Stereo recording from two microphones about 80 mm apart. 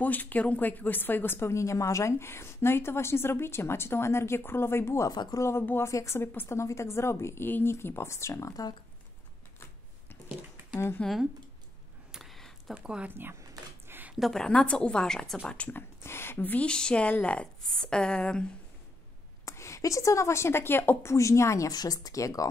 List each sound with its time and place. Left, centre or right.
0.0 s a woman's voice: left
5.1 s speech: left
5.4 s a woman's voice: left
11.0 s speech: centre
12.1 s a sound: centre
12.7 s speech: centre
13.1 s speech: right
13.8 s a sound: right
14.2 s speech: centre
16.0 s speech: left; by 18.5 s centre
19.4 s a woman's voice: left
21.6 s speech: left